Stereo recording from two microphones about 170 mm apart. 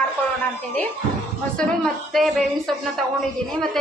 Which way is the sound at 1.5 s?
5° left (ahead or behind).